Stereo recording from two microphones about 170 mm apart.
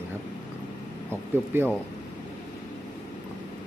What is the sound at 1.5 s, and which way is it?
Speech, 15° right (ahead or behind).